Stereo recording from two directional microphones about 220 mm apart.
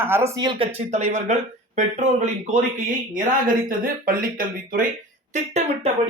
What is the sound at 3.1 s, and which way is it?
Speech, 40° right (ahead or behind).